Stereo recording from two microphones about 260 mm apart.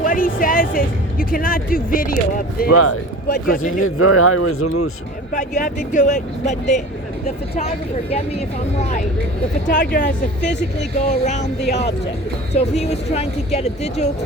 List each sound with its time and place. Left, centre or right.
0.0 s speech: left
2.7 s speech: left
3.2 s speech: left
3.8 s speech: left
5.3 s speech: left
9.6 s speech: left
12.5 s speech: left